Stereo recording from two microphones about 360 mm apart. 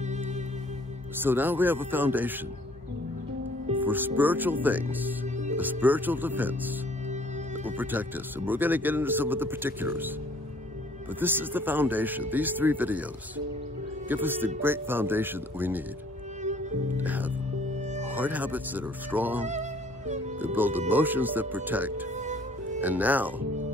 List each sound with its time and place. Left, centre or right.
1.2 s speech: centre
3.6 s music: centre
4.2 s speech: centre
11.1 s speech: centre
14.0 s speech: centre
16.9 s speech: centre
17.6 s music: centre
18.1 s speech: centre
19.4 s music: centre
20.3 s speech: centre
22.1 s music: centre
22.8 s speech: centre